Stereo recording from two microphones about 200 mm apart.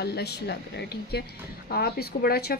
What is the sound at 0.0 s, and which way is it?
A woman's voice, 55° left (ahead or behind).